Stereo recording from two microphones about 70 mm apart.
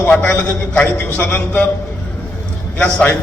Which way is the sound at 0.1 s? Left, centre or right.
Centre.